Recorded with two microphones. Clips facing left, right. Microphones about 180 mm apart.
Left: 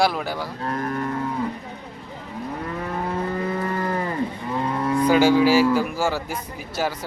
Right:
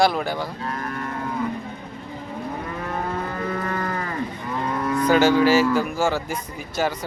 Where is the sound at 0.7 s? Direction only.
35° left (ahead or behind).